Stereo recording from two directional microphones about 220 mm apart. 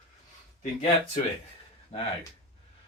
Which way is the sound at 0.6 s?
30° left (ahead or behind).